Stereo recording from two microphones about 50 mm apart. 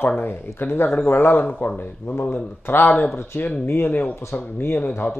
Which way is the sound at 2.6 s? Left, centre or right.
Left.